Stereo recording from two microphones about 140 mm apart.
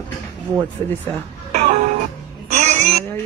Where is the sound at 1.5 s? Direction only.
55° right (ahead or behind).